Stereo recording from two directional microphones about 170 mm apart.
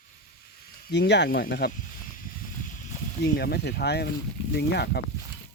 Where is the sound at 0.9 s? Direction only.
90° left; by 1.7 s 65° left (ahead or behind).